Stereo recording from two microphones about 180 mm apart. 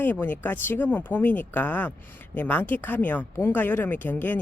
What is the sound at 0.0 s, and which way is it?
Speech, 10° left (ahead or behind).